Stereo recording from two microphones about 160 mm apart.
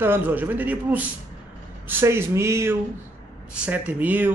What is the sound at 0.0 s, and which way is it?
A man's voice, 10° right (ahead or behind).